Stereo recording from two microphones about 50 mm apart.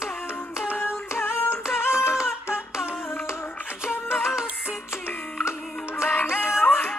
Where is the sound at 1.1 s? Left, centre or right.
Left.